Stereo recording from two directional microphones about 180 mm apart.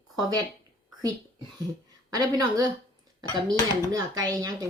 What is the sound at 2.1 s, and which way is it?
Speech, 20° right (ahead or behind).